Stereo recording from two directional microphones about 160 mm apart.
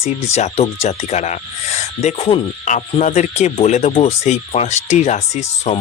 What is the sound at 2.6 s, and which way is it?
Speech, 50° left (ahead or behind).